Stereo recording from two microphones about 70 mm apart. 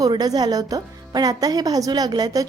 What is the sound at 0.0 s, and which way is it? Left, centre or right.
A woman's voice, right.